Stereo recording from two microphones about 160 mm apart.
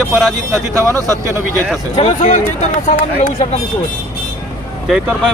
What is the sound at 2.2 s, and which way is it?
Speech, 55° left (ahead or behind).